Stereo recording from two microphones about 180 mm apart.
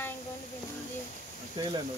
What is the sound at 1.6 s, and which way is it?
Speech, 25° right (ahead or behind).